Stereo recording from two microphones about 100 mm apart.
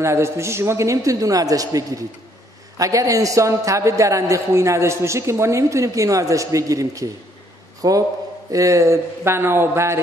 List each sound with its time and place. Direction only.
0.0 s a man's voice: 30° right (ahead or behind)